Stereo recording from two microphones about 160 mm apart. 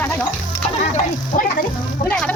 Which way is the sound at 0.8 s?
45° left (ahead or behind).